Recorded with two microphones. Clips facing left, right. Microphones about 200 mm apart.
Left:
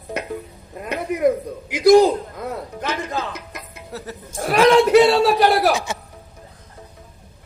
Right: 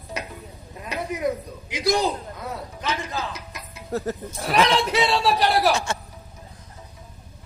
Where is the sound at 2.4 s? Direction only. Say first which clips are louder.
Left 5 dB; 55° left (ahead or behind).